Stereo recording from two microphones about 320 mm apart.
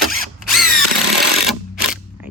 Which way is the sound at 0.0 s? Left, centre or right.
Centre.